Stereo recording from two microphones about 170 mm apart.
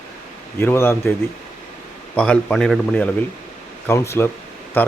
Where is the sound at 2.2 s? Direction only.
5° left (ahead or behind).